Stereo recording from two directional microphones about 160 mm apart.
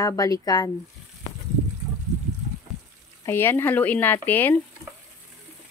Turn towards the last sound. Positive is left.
turn(degrees=10)  # may be behind; listen again after turning